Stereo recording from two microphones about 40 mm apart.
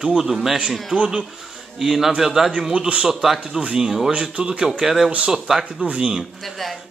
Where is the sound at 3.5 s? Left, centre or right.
Right.